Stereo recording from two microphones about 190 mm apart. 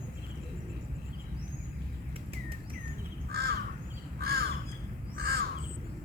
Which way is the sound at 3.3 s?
55° right (ahead or behind).